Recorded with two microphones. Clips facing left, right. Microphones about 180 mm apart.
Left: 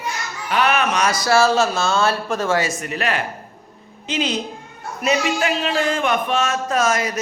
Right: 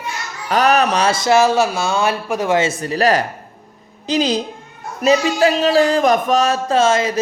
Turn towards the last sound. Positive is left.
turn(degrees=-25)  # may be behind; listen again after turning